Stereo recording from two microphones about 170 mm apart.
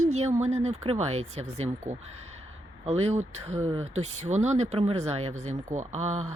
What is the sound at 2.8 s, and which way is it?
Speech, 40° right (ahead or behind).